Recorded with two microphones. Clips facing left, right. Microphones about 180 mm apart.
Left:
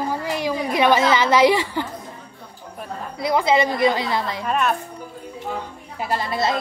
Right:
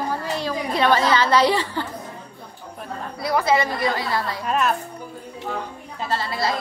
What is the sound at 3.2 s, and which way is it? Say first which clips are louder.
A woman's voice: left 2 dB; 20° left (ahead or behind).